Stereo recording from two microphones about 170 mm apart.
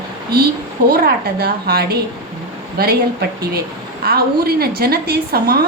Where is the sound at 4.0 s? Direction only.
65° right (ahead or behind).